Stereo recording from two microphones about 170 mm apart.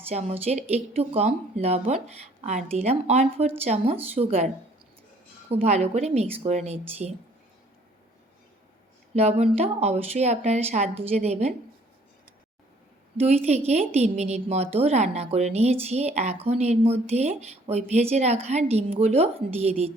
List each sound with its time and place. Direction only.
0.1 s speech: 40° right (ahead or behind)
5.5 s speech: 40° right (ahead or behind)
9.1 s speech: 40° right (ahead or behind)
13.1 s speech: 40° right (ahead or behind)